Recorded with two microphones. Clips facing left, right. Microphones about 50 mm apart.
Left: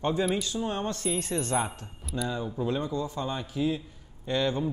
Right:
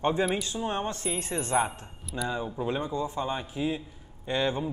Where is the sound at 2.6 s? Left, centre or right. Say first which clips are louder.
Left 1 dB; right.